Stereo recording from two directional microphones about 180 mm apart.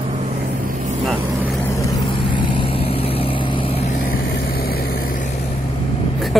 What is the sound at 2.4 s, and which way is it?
Vehicle, 25° left (ahead or behind).